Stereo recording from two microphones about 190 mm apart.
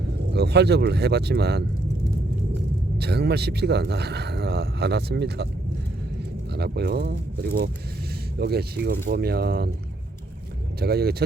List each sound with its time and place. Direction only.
0.3 s speech: 60° right (ahead or behind)
3.0 s speech: 60° right (ahead or behind)
6.5 s speech: 60° right (ahead or behind)
10.8 s speech: 55° right (ahead or behind)